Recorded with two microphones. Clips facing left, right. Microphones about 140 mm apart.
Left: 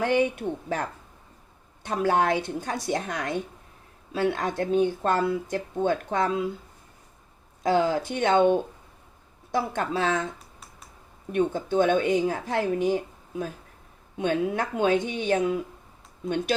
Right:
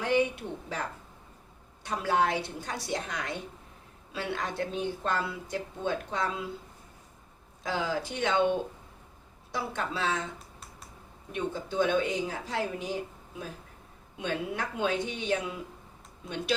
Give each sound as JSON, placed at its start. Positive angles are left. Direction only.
{"t": 0.0, "sound": "speech", "side_deg": 55}
{"t": 1.8, "sound": "speech", "side_deg": 55}
{"t": 7.6, "sound": "speech", "side_deg": 55}
{"t": 11.3, "sound": "speech", "side_deg": 55}
{"t": 14.2, "sound": "speech", "side_deg": 55}